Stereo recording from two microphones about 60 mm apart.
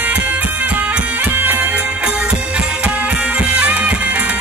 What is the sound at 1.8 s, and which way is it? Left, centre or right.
Music, centre.